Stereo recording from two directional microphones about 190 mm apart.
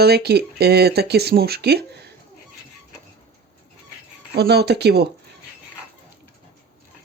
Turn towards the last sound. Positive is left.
turn(degrees=-60)  # may be behind; listen again after turning